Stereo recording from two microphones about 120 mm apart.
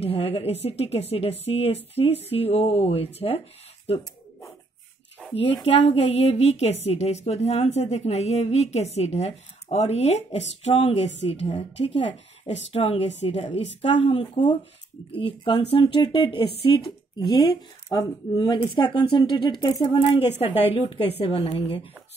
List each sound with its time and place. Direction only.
0.0 s a woman's voice: 55° left (ahead or behind)
5.3 s a woman's voice: 55° left (ahead or behind)
17.2 s speech: 35° left (ahead or behind)
20.1 s a woman's voice: 50° left (ahead or behind)